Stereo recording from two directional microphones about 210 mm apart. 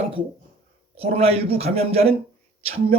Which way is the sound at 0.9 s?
30° right (ahead or behind).